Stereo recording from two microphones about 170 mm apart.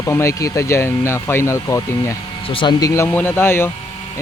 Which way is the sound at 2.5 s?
30° left (ahead or behind).